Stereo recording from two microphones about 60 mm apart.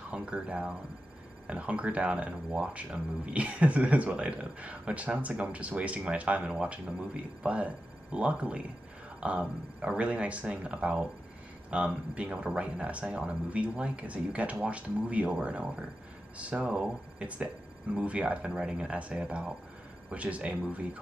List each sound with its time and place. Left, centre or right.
0.1 s speech: centre